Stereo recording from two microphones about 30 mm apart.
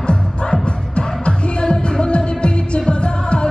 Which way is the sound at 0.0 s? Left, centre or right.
Left.